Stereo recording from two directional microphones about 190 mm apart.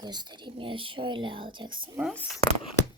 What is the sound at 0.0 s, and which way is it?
Speech, 20° right (ahead or behind).